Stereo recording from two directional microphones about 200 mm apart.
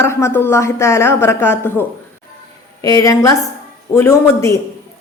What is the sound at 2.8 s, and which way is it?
A woman's voice, 20° left (ahead or behind).